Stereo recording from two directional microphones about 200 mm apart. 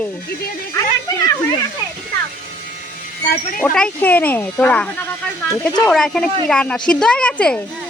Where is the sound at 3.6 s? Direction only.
5° left (ahead or behind).